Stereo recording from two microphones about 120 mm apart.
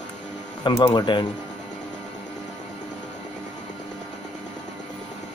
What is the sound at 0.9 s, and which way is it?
Speech, 40° left (ahead or behind).